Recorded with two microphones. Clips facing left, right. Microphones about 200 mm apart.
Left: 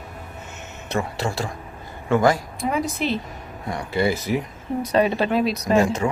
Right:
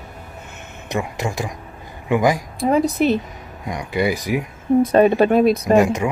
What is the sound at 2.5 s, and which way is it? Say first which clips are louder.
Speech: right 7 dB; 35° right (ahead or behind).